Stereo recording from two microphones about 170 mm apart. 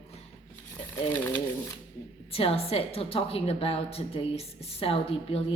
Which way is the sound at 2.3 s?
35° left (ahead or behind).